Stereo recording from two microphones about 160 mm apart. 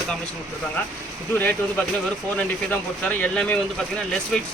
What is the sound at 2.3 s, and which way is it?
Speech, 10° left (ahead or behind).